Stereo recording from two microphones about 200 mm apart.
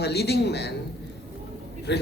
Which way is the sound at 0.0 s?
55° left (ahead or behind).